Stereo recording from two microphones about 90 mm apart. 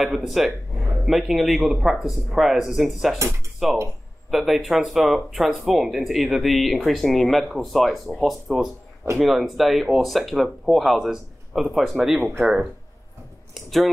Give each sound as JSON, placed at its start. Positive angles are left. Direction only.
{"t": 0.0, "sound": "speech", "side_deg": -5}
{"t": 3.2, "sound": "speech", "side_deg": -35}
{"t": 4.3, "sound": "speech", "side_deg": 0}